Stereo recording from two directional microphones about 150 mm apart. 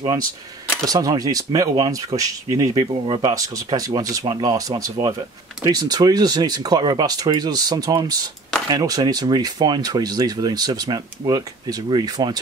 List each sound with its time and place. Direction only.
0.8 s speech: 25° right (ahead or behind)